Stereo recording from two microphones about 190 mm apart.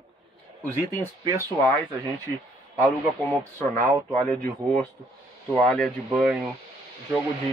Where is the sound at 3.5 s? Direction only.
10° left (ahead or behind).